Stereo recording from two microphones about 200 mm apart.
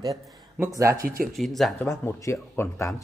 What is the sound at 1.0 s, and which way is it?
Speech, 45° right (ahead or behind).